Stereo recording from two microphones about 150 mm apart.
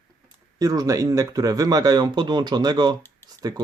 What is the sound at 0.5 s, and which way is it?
Speech, 25° right (ahead or behind).